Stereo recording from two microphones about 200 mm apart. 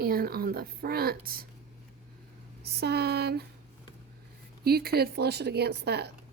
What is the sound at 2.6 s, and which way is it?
Speech, 55° right (ahead or behind).